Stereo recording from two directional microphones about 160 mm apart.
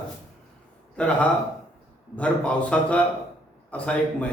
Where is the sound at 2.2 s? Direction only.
5° left (ahead or behind).